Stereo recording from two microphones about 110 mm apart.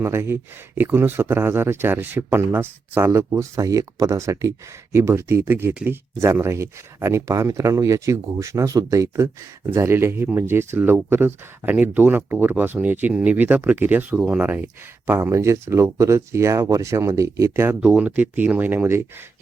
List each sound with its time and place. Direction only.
0.0 s speech: 25° right (ahead or behind)
17.7 s speech: 10° right (ahead or behind)